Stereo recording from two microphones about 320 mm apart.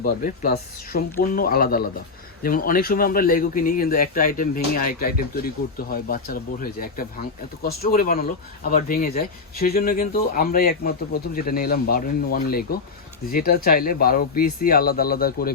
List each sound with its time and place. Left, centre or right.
0.0 s speech: left